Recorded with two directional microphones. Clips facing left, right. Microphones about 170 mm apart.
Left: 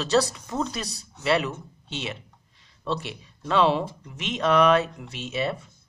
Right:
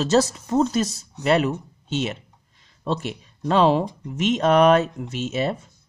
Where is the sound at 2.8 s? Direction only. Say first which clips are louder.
Right 4 dB; 45° right (ahead or behind).